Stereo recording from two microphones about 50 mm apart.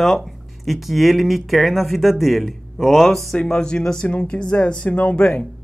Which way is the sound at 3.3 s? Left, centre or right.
Centre.